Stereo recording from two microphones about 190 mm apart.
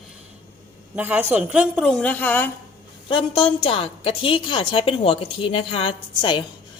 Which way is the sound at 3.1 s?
30° left (ahead or behind).